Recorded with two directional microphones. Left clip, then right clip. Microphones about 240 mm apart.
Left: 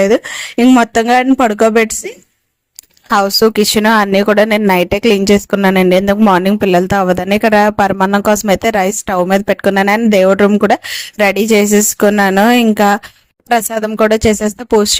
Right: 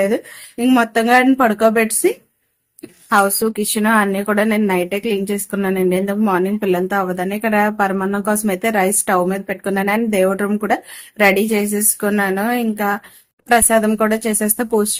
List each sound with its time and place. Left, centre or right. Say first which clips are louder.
0.0 s speech: left 7 dB; left